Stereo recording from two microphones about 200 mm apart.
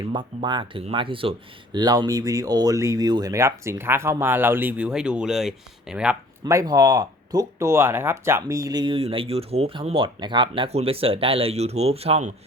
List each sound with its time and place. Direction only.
0.0 s speech: 20° right (ahead or behind); by 6.1 s 5° right (ahead or behind)
6.4 s speech: 15° right (ahead or behind)